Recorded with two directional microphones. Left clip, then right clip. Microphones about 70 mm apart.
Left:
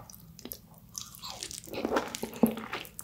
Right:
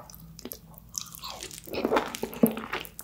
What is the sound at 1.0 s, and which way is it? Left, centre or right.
Crunch, centre.